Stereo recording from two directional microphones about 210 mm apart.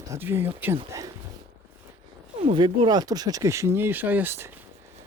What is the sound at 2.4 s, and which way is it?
Speech, 25° right (ahead or behind).